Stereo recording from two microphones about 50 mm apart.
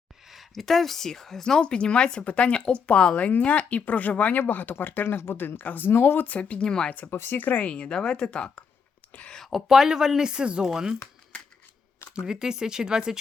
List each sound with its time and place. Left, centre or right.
0.3 s speech: centre; by 6.6 s left
6.6 s speech: centre
7.1 s speech: left
7.4 s speech: left
9.5 s speech: centre
12.1 s speech: centre